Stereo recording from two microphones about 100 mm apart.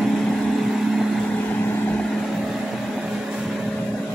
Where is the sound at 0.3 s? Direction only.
Centre (ahead or behind).